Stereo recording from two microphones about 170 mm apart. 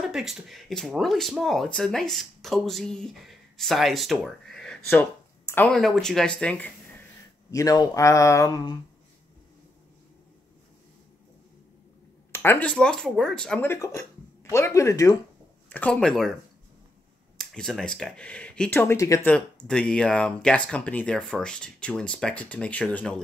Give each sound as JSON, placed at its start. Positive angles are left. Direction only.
{"t": 0.1, "sound": "speech", "side_deg": 0}
{"t": 7.5, "sound": "speech", "side_deg": 20}
{"t": 12.3, "sound": "speech", "side_deg": 15}
{"t": 13.7, "sound": "speech", "side_deg": 15}
{"t": 15.7, "sound": "speech", "side_deg": 10}
{"t": 17.4, "sound": "speech", "side_deg": 0}
{"t": 19.3, "sound": "speech", "side_deg": 5}